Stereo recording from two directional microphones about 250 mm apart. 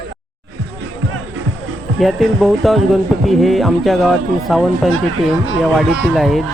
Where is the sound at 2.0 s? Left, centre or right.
Centre.